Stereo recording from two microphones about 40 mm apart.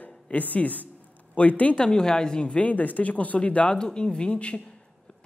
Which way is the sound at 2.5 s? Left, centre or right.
Left.